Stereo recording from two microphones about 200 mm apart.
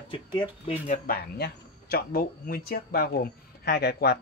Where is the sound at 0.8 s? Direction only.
40° left (ahead or behind).